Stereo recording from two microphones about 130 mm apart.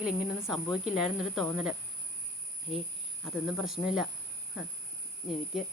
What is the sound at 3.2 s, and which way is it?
Speech, centre (ahead or behind).